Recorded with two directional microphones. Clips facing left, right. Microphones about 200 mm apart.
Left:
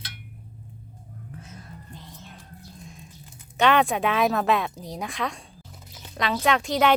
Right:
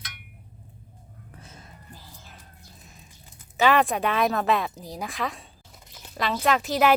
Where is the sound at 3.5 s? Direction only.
Centre (ahead or behind).